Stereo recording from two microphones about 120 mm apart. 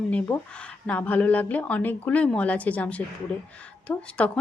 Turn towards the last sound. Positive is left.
turn(degrees=15)  # may be behind; listen again after turning